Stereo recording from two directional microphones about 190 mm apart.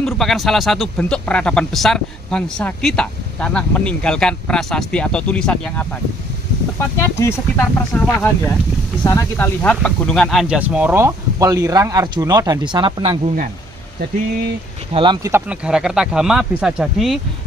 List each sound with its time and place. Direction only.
0.0 s speech: centre (ahead or behind); by 13.2 s 25° right (ahead or behind)
15.0 s speech: 25° right (ahead or behind)
15.3 s speech: 5° right (ahead or behind)